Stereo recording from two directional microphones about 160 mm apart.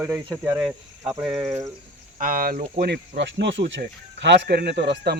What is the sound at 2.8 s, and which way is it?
Speech, 90° right.